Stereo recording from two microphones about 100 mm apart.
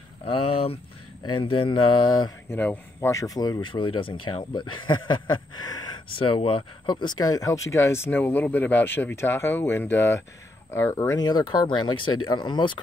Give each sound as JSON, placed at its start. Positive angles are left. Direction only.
{"t": 0.2, "sound": "speech", "side_deg": 75}
{"t": 1.2, "sound": "speech", "side_deg": 55}
{"t": 2.5, "sound": "speech", "side_deg": 20}
{"t": 3.1, "sound": "speech", "side_deg": 35}
{"t": 6.1, "sound": "speech", "side_deg": 60}
{"t": 11.2, "sound": "speech", "side_deg": 45}